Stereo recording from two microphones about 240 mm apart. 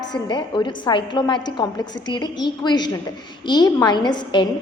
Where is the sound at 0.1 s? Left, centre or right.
Centre.